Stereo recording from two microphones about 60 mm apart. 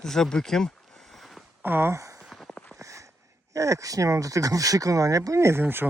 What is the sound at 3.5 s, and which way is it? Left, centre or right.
Speech, right.